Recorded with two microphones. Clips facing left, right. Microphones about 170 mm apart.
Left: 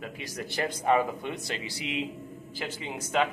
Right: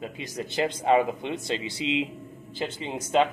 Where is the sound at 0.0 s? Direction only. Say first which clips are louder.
Right 3 dB; 20° right (ahead or behind).